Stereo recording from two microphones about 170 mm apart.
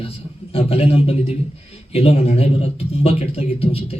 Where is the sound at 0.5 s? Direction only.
35° left (ahead or behind).